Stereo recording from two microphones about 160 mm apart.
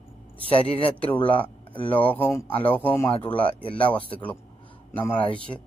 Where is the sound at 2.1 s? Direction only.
10° left (ahead or behind).